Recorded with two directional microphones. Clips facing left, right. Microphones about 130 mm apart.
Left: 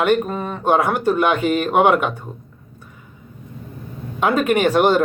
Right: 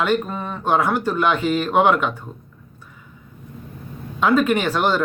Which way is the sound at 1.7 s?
10° left (ahead or behind).